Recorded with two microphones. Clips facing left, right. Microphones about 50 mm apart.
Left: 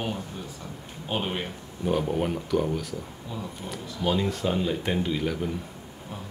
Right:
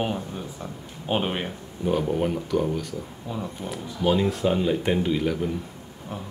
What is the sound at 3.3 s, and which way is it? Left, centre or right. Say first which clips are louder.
Speech: right 4 dB; centre.